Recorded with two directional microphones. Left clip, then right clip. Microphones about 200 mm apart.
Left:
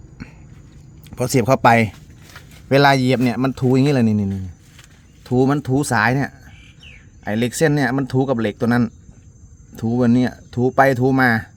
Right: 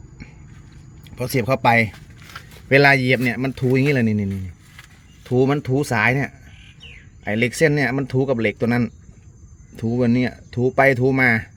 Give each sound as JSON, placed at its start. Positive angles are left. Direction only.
{"t": 1.0, "sound": "speech", "side_deg": 30}
{"t": 2.6, "sound": "speech", "side_deg": 15}
{"t": 7.7, "sound": "speech", "side_deg": 10}